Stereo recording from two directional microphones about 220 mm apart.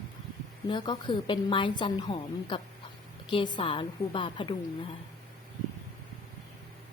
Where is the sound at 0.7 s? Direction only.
20° left (ahead or behind).